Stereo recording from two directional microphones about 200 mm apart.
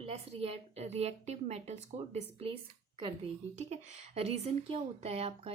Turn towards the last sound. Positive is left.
turn(degrees=-30)  # may be behind; listen again after turning